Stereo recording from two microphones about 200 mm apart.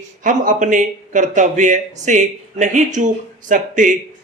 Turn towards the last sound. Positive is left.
turn(degrees=-40)  # may be behind; listen again after turning